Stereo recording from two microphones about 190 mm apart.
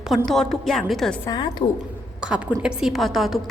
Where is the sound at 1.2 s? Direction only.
20° left (ahead or behind).